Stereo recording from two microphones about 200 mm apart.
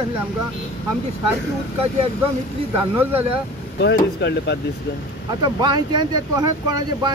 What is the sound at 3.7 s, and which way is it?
Speech, 60° left (ahead or behind).